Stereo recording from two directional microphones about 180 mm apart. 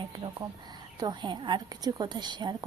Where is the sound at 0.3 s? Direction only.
20° right (ahead or behind).